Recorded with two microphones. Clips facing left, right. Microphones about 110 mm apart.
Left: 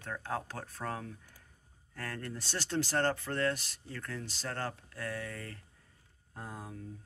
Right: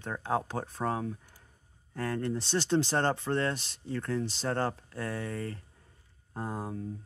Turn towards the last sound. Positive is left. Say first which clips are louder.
# right 8 dB
turn(degrees=-30)  # may be behind; listen again after turning